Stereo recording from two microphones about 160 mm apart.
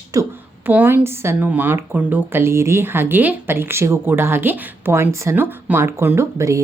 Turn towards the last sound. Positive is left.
turn(degrees=-15)  # may be behind; listen again after turning